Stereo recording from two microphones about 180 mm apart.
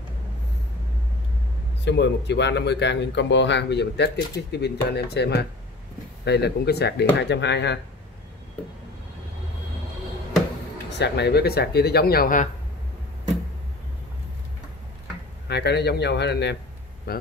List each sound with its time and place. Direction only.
1.9 s speech: 70° left (ahead or behind)
11.0 s speech: 65° left (ahead or behind); by 12.4 s 50° left (ahead or behind)
15.4 s speech: 65° left (ahead or behind)